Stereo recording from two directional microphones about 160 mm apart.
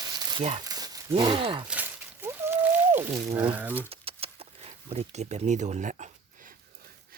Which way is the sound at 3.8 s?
40° right (ahead or behind).